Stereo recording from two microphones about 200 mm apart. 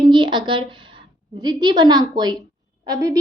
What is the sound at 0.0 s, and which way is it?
A woman's voice, 25° right (ahead or behind).